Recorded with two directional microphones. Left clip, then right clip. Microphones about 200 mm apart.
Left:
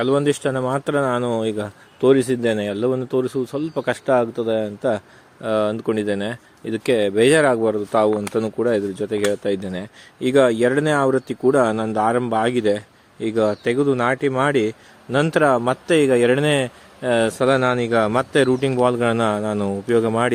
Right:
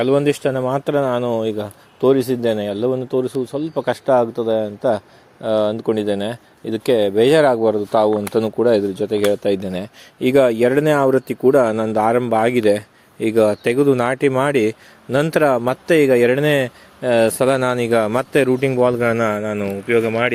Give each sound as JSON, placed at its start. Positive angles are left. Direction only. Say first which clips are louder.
{"t": 0.0, "sound": "speech", "louder": "right 3 dB", "side_deg": -5}
{"t": 17.4, "sound": "a man's voice", "louder": "right 1 dB", "side_deg": -20}